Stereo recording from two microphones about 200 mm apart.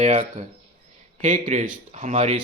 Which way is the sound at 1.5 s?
35° right (ahead or behind).